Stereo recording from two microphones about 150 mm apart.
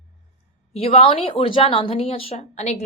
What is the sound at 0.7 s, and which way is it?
A woman's voice, 40° left (ahead or behind).